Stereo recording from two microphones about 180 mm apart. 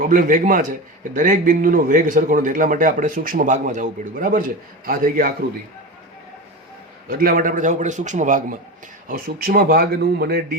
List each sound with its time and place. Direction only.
0.0 s a man's voice: 50° right (ahead or behind)
7.1 s a man's voice: 55° right (ahead or behind)